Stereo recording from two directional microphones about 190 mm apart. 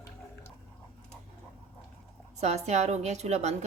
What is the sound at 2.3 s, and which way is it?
Speech, 35° right (ahead or behind).